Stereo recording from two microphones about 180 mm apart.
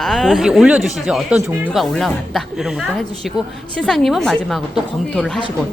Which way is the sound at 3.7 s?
5° left (ahead or behind).